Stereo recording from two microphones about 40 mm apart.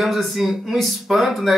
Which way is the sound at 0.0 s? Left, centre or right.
Centre.